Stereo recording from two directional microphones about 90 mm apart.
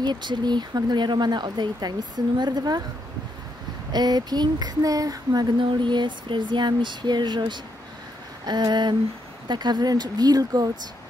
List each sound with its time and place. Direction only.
0.0 s speech: 55° right (ahead or behind)
3.9 s speech: 50° right (ahead or behind)
5.7 s speech: 60° right (ahead or behind)